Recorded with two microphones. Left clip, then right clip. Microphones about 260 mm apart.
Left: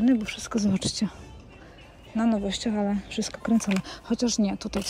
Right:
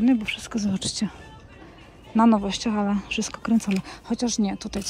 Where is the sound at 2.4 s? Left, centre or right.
Centre.